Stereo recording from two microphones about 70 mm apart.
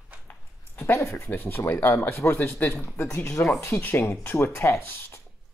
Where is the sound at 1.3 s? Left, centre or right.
Left.